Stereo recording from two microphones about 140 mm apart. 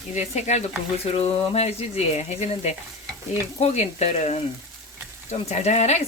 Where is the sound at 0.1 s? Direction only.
55° left (ahead or behind).